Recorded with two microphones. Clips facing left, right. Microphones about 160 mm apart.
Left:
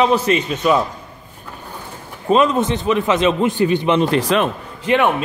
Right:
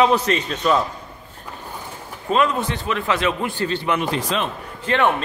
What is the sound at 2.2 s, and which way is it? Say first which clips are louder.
A man's voice: left 5 dB; 20° left (ahead or behind).